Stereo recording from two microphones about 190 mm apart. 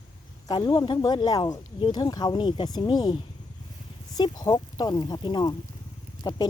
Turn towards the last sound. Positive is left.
turn(degrees=25)  # may be behind; listen again after turning